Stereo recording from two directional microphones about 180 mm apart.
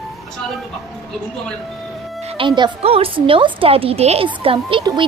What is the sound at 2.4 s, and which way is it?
A woman's voice, 25° right (ahead or behind).